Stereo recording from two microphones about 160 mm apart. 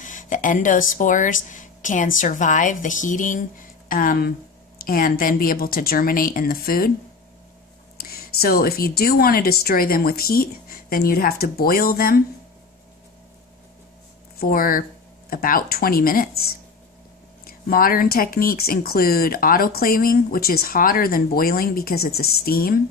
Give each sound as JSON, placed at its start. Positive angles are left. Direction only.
{"t": 0.0, "sound": "a woman's voice", "side_deg": 55}
{"t": 8.0, "sound": "speech", "side_deg": 75}
{"t": 14.4, "sound": "speech", "side_deg": 65}
{"t": 17.5, "sound": "speech", "side_deg": 65}